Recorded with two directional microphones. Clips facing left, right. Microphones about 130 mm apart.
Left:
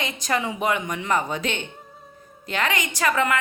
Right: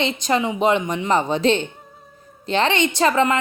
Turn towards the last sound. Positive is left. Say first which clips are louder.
# right 5 dB
turn(degrees=-25)  # may be behind; listen again after turning